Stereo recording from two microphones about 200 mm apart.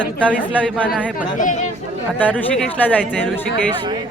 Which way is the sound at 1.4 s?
40° left (ahead or behind).